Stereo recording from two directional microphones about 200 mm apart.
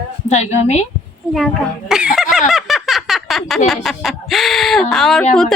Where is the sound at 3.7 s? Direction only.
Centre (ahead or behind).